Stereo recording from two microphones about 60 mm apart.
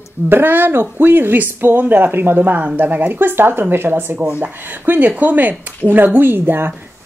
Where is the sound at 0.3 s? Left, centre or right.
Right.